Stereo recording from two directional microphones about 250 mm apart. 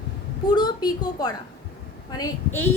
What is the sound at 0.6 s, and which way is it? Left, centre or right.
A woman's voice, centre.